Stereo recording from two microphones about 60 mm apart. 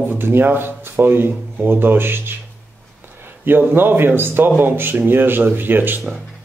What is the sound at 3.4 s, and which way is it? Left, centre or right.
Speech, right.